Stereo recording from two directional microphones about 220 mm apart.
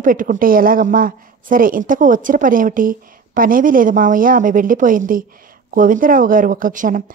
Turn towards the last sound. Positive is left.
turn(degrees=-35)  # may be behind; listen again after turning